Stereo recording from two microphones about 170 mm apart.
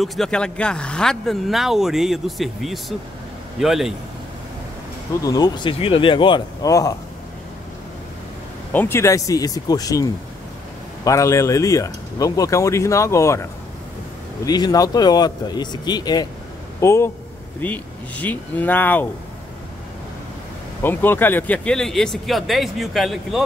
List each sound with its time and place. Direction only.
0.0 s speech: centre (ahead or behind)
5.2 s speech: 20° left (ahead or behind)
8.7 s speech: 15° left (ahead or behind)
11.1 s speech: 20° left (ahead or behind)
20.8 s speech: 10° left (ahead or behind)